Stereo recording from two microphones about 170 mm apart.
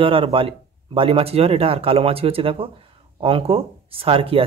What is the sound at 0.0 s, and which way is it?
Speech, 30° right (ahead or behind).